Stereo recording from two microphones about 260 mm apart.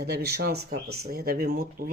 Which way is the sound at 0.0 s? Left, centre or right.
Right.